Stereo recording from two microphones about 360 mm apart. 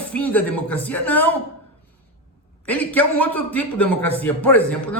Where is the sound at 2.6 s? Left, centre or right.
Centre.